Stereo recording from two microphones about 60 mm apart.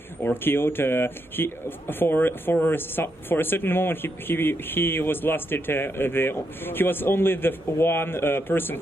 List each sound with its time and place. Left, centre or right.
0.2 s speech: left